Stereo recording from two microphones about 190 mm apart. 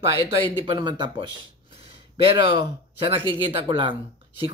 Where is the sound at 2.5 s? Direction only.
30° right (ahead or behind).